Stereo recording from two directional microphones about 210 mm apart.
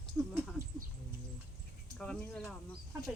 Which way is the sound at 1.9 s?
5° left (ahead or behind).